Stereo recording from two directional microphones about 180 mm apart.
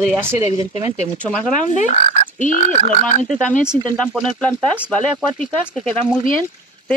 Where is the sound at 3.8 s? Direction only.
5° left (ahead or behind).